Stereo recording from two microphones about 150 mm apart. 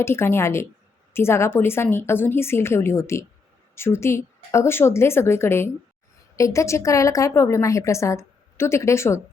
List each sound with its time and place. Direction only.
0.0 s a woman's voice: 15° left (ahead or behind)